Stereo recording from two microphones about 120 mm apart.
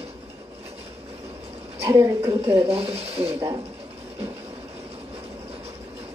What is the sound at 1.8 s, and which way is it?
A woman's voice, 50° right (ahead or behind).